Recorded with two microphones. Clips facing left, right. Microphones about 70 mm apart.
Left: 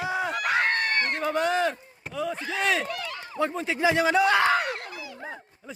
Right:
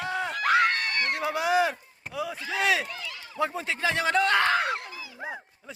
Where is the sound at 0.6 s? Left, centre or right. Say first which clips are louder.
Left 1 dB; left.